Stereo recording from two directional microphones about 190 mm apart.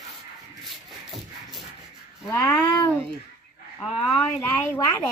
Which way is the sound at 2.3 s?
10° left (ahead or behind).